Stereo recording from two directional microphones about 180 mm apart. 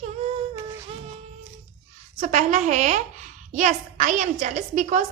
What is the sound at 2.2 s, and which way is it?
A woman's voice, 40° right (ahead or behind).